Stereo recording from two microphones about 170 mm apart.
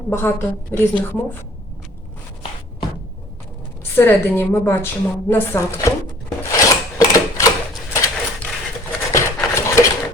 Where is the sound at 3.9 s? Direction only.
15° left (ahead or behind).